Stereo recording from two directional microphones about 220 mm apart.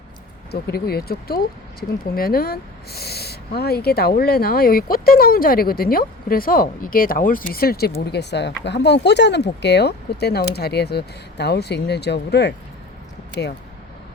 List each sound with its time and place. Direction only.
0.5 s speech: 45° left (ahead or behind)